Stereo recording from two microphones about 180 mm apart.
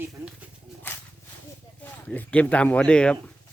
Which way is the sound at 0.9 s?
10° left (ahead or behind).